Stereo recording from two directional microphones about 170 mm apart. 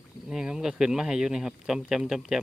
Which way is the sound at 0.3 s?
5° right (ahead or behind).